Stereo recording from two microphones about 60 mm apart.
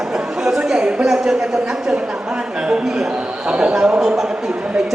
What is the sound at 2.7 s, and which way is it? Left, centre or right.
Speech, centre.